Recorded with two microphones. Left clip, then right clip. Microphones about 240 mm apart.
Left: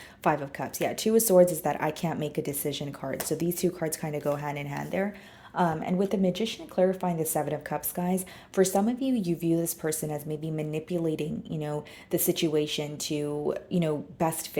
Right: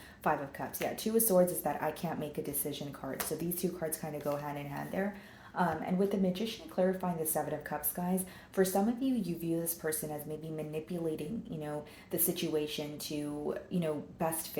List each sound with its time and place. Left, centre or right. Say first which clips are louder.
0.2 s speech: left 6 dB; left